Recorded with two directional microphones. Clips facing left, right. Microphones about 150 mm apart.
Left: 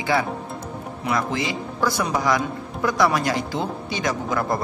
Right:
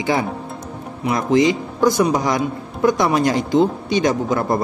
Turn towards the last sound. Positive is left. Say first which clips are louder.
# right 5 dB
turn(degrees=-25)  # may be behind; listen again after turning